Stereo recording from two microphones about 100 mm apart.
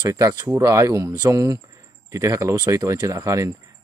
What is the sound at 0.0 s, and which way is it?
Speech, 35° right (ahead or behind).